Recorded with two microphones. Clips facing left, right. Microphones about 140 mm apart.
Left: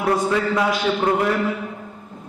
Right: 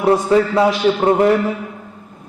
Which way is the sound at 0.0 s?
30° right (ahead or behind).